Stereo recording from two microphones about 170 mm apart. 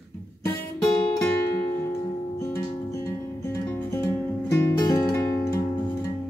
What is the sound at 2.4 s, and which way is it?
Music, 20° left (ahead or behind).